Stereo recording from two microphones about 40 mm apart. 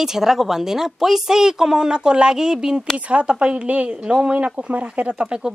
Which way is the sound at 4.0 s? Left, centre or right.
Centre.